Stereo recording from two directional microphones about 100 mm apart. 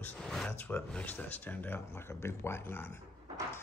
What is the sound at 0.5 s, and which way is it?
Speech, 20° left (ahead or behind).